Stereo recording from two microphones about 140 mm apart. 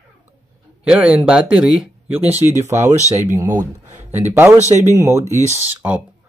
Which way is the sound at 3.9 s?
60° right (ahead or behind).